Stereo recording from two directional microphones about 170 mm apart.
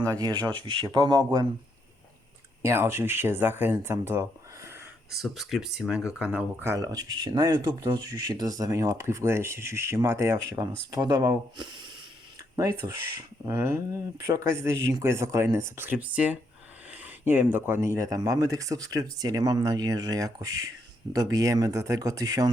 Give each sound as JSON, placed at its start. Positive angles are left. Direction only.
{"t": 0.0, "sound": "speech", "side_deg": -20}
{"t": 2.6, "sound": "speech", "side_deg": -15}
{"t": 5.1, "sound": "speech", "side_deg": 0}